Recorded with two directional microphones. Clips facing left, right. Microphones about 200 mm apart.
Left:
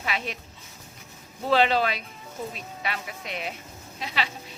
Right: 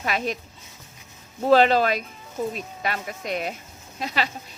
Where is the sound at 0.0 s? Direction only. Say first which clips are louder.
Right 5 dB; 45° right (ahead or behind).